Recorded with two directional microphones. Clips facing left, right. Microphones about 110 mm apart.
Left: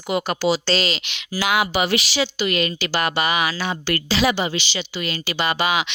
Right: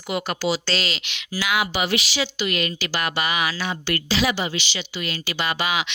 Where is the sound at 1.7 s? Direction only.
45° left (ahead or behind).